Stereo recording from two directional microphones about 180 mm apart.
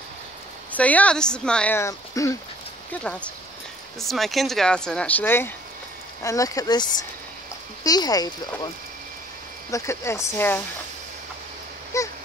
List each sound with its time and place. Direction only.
0.7 s speech: 10° left (ahead or behind)
9.7 s speech: 15° left (ahead or behind)
11.9 s a sound: 15° left (ahead or behind)